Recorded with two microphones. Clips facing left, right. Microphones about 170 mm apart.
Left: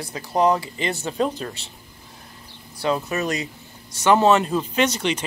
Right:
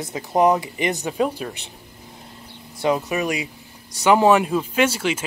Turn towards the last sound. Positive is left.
turn(degrees=-5)  # may be behind; listen again after turning